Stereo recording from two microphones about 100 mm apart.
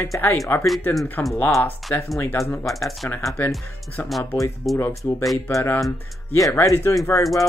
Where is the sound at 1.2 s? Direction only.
15° left (ahead or behind).